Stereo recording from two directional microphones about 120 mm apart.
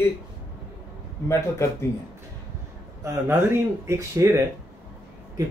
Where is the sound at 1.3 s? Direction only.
20° left (ahead or behind).